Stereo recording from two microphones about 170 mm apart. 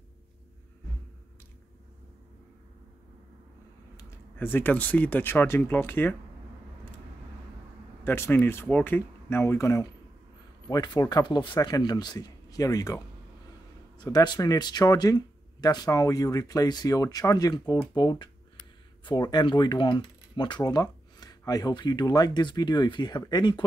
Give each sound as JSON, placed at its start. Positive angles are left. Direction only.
{"t": 3.9, "sound": "speech", "side_deg": 15}
{"t": 8.0, "sound": "speech", "side_deg": 15}
{"t": 14.1, "sound": "speech", "side_deg": 25}